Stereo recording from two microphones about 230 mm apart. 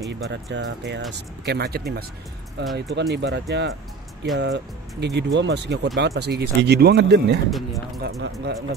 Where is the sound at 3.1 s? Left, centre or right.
Right.